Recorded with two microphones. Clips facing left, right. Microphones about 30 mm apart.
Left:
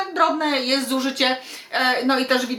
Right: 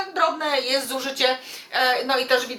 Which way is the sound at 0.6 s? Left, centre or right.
Left.